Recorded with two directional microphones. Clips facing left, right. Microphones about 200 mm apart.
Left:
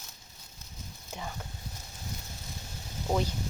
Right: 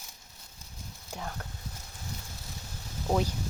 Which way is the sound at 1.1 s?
Centre (ahead or behind).